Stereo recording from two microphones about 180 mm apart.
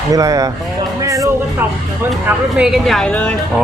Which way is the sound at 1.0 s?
20° right (ahead or behind).